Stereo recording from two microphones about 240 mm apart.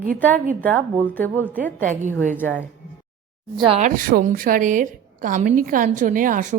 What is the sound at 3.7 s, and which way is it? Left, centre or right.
A woman's voice, right.